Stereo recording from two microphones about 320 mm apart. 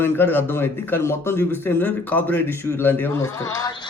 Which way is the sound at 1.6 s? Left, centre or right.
Centre.